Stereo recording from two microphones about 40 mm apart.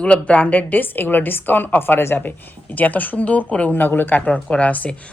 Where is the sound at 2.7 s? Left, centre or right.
Left.